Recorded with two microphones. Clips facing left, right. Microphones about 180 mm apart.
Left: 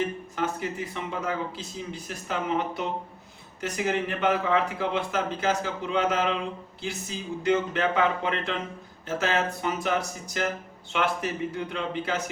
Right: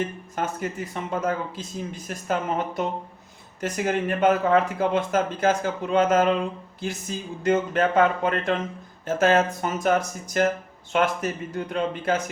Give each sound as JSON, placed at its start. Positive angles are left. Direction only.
{"t": 0.3, "sound": "a man's voice", "side_deg": -45}